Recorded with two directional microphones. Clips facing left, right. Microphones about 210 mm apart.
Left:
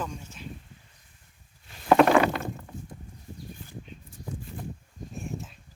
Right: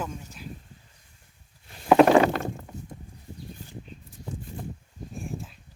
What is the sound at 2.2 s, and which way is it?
Rowboat, 40° right (ahead or behind).